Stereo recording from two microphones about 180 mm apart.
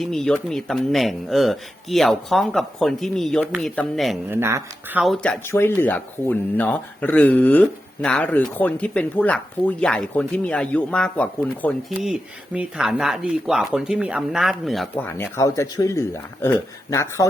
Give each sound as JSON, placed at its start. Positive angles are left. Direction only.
{"t": 0.0, "sound": "speech", "side_deg": 0}
{"t": 4.3, "sound": "speech", "side_deg": -15}
{"t": 5.0, "sound": "speech", "side_deg": 5}
{"t": 12.5, "sound": "speech", "side_deg": -5}
{"t": 14.9, "sound": "speech", "side_deg": 15}